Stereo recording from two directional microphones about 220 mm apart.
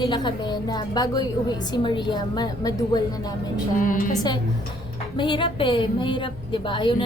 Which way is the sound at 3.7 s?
40° left (ahead or behind).